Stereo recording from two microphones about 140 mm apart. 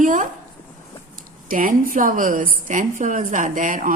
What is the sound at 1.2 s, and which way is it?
A woman's voice, 90° right.